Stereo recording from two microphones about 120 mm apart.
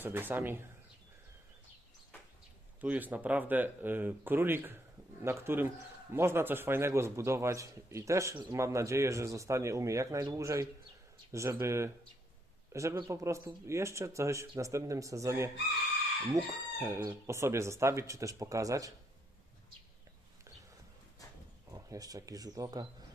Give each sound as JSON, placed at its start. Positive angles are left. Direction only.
{"t": 0.0, "sound": "speech", "side_deg": -15}
{"t": 2.8, "sound": "a man's voice", "side_deg": -10}
{"t": 21.7, "sound": "speech", "side_deg": -30}